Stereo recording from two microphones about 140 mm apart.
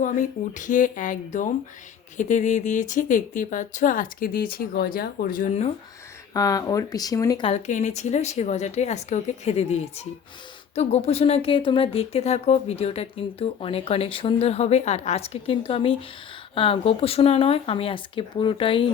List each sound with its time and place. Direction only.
0.0 s speech: 65° left (ahead or behind); by 5.5 s 90° left
5.5 s speech: 50° left (ahead or behind)
6.3 s speech: 25° left (ahead or behind)
7.7 s speech: 55° left (ahead or behind); by 18.9 s 40° left (ahead or behind)